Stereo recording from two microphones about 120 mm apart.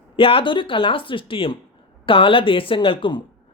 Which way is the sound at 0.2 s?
50° left (ahead or behind).